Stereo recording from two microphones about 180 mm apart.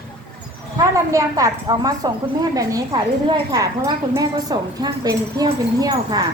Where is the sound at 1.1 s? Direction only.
20° right (ahead or behind).